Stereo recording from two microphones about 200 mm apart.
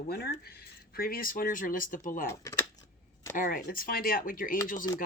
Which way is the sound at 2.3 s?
15° left (ahead or behind).